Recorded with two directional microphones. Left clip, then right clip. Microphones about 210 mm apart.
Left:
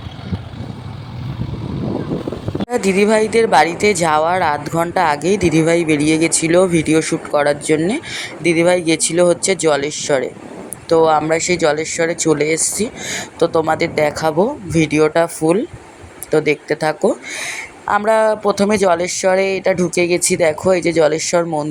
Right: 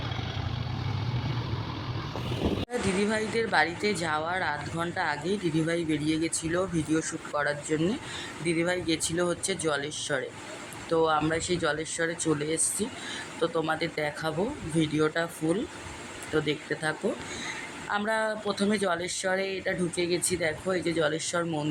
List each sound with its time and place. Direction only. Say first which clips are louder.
2.6 s speech: left 18 dB; 40° left (ahead or behind)